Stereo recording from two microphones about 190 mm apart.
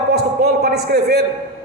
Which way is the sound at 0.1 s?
55° right (ahead or behind).